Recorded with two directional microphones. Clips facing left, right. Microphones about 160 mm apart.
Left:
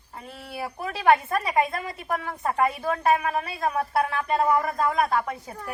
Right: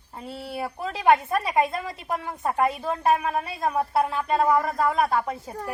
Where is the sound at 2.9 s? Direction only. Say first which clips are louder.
Even; 20° right (ahead or behind).